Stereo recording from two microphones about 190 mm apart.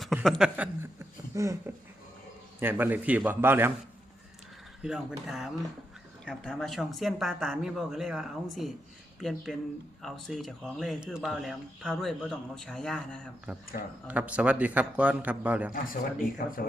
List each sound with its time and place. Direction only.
0.0 s a man's voice: centre (ahead or behind)
4.8 s speech: 5° right (ahead or behind)
14.1 s a man's voice: 5° right (ahead or behind)
15.7 s speech: 45° left (ahead or behind)